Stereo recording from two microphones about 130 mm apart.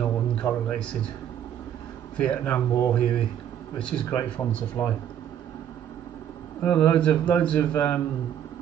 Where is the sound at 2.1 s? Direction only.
10° left (ahead or behind).